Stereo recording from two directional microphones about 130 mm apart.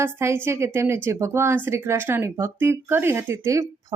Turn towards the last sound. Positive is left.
turn(degrees=-25)  # may be behind; listen again after turning